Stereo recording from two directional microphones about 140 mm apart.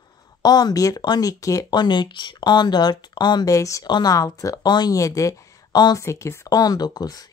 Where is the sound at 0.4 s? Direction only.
30° left (ahead or behind).